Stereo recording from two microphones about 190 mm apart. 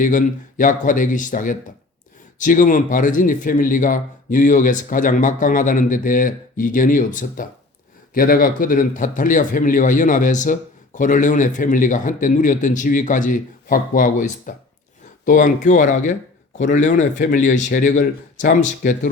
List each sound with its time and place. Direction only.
0.0 s a man's voice: 45° left (ahead or behind)